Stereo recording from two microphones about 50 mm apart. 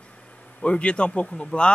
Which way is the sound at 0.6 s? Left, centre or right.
Left.